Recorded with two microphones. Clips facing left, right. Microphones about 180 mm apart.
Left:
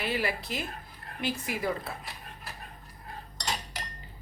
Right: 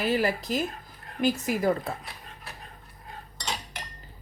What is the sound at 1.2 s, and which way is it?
Cutlery, 45° right (ahead or behind).